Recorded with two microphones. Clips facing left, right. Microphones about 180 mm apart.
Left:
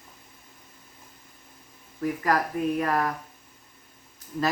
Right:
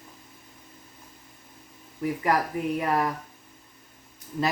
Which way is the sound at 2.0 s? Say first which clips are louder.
Even; 20° right (ahead or behind).